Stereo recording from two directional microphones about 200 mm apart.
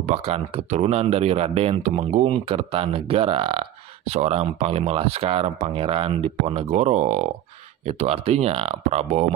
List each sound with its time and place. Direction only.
0.0 s speech: 35° right (ahead or behind)